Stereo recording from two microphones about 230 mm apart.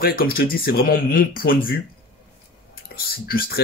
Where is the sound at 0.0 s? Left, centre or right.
Left.